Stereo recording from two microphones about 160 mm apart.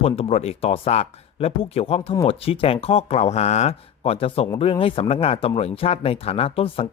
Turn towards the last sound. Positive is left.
turn(degrees=40)  # may be behind; listen again after turning